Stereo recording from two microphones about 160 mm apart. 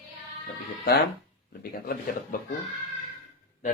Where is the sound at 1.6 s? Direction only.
70° left (ahead or behind).